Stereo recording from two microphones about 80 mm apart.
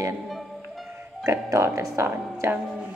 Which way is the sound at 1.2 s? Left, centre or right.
Right.